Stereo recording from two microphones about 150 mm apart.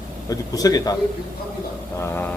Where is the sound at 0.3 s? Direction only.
25° left (ahead or behind).